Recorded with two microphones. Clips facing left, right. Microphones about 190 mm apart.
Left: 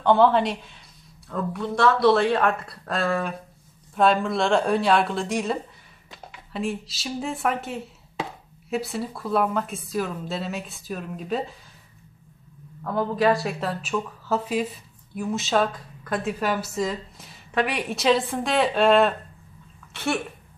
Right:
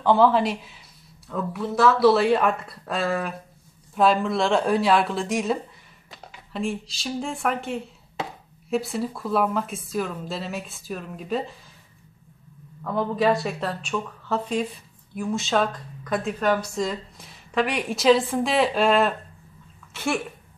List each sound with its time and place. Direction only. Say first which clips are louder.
0.0 s speech: even; centre (ahead or behind)
12.8 s speech: even; centre (ahead or behind)